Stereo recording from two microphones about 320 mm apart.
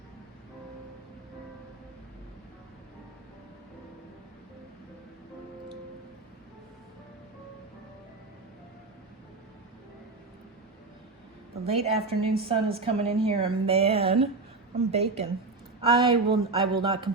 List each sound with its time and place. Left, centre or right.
11.6 s a woman's voice: centre